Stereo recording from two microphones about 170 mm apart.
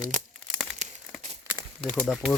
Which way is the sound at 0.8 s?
45° right (ahead or behind).